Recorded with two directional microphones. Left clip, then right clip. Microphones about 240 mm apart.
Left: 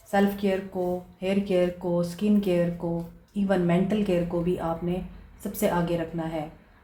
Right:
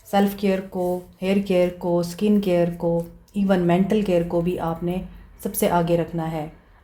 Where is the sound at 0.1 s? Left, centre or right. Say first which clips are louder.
Right 3 dB; right.